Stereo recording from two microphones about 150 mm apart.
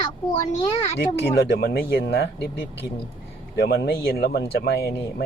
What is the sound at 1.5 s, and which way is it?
Speech, 85° left.